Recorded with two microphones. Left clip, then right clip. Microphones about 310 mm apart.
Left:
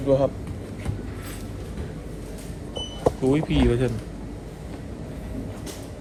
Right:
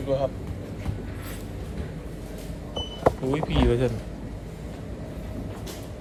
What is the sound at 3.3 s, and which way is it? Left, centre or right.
Speech, centre.